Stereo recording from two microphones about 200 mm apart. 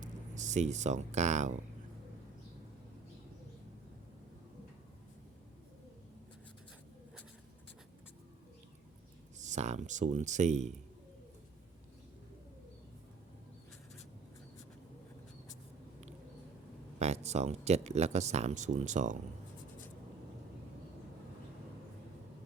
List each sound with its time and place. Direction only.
0.0 s speech: 35° right (ahead or behind)
9.4 s speech: 35° right (ahead or behind)
17.0 s speech: 35° right (ahead or behind)